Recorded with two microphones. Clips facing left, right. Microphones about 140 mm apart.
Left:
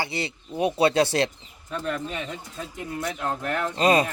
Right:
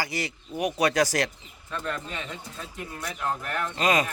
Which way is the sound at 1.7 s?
15° left (ahead or behind).